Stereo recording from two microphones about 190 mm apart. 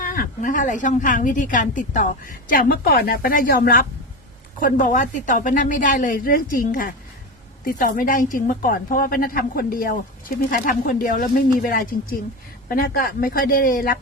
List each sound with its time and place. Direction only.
0.0 s a woman's voice: 50° left (ahead or behind)